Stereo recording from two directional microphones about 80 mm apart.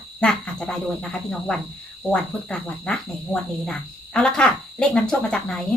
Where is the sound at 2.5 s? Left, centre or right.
Centre.